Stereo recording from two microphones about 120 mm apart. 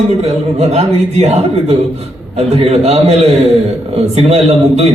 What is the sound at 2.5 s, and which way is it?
Speech, 60° right (ahead or behind).